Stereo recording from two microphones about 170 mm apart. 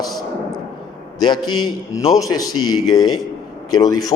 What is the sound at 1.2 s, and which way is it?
A man's voice, 25° left (ahead or behind).